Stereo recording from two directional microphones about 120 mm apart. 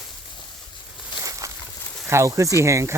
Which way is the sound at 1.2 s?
25° right (ahead or behind).